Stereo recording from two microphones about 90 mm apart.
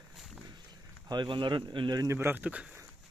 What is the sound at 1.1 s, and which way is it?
Speech, 60° right (ahead or behind).